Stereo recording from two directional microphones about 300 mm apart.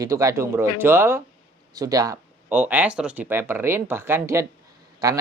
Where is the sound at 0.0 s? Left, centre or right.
Centre.